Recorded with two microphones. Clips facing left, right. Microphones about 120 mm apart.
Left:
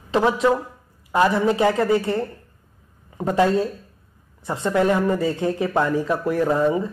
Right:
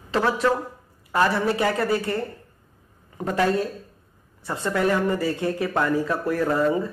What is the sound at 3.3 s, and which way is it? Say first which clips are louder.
Speech: left 3 dB; 25° left (ahead or behind).